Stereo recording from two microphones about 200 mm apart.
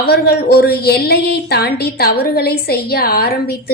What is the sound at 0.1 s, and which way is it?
A woman's voice, 50° left (ahead or behind).